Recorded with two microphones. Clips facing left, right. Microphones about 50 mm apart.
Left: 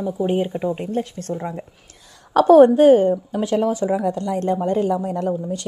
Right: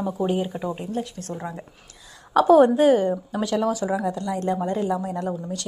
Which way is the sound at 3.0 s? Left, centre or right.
Left.